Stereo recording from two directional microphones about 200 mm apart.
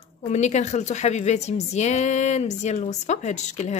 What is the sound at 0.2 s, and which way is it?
A woman's voice, 35° left (ahead or behind).